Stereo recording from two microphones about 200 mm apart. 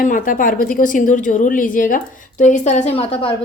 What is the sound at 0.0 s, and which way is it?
A woman's voice, 45° left (ahead or behind).